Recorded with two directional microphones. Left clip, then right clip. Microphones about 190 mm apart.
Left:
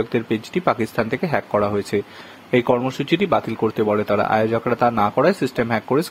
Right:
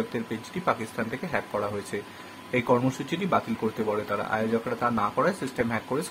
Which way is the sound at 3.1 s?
45° left (ahead or behind).